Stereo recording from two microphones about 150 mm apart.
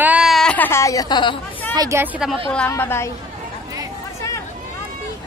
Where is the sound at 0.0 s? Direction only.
5° right (ahead or behind); by 1.4 s 30° left (ahead or behind).